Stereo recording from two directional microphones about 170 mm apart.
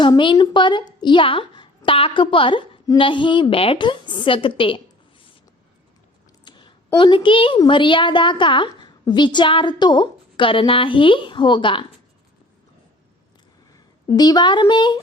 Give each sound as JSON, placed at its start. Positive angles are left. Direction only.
{"t": 0.0, "sound": "a woman's voice", "side_deg": 30}
{"t": 6.4, "sound": "a sound", "side_deg": 25}
{"t": 7.6, "sound": "a woman's voice", "side_deg": 30}
{"t": 14.2, "sound": "a woman's voice", "side_deg": 25}